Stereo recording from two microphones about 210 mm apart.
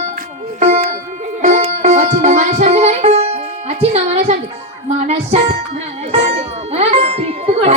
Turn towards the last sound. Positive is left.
turn(degrees=-30)  # may be behind; listen again after turning